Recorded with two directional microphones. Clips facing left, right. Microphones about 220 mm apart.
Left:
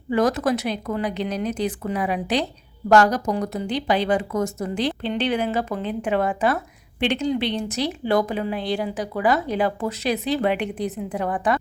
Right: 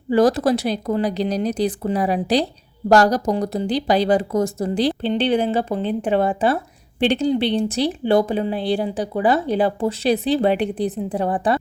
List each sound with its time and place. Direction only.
0.1 s speech: 35° right (ahead or behind)